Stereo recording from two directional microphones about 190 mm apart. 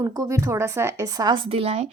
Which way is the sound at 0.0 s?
15° right (ahead or behind).